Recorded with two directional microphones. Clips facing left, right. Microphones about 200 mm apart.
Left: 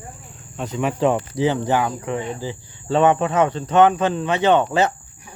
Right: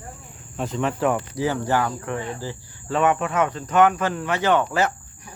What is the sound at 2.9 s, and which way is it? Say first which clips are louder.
Speech: left 4 dB; 30° left (ahead or behind).